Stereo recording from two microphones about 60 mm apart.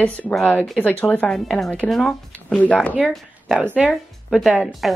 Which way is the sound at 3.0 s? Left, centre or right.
Centre.